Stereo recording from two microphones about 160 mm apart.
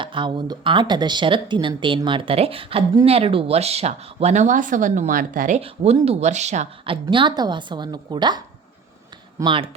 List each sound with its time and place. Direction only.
0.0 s speech: 30° right (ahead or behind); by 5.5 s 60° right (ahead or behind)
5.5 s speech: 40° right (ahead or behind)
6.9 s a woman's voice: 30° right (ahead or behind)
9.4 s speech: 30° right (ahead or behind)